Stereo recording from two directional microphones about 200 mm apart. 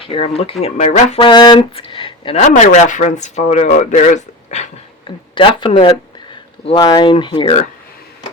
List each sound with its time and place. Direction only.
0.0 s speech: 30° left (ahead or behind)
1.3 s speech: 20° left (ahead or behind)
5.3 s speech: 25° left (ahead or behind)